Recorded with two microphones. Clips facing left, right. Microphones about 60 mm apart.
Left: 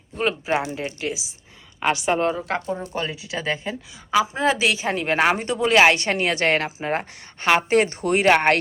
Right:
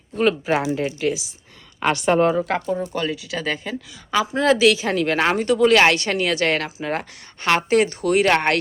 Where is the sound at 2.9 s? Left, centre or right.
Left.